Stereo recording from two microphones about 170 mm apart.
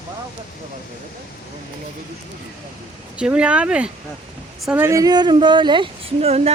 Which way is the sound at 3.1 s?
5° right (ahead or behind).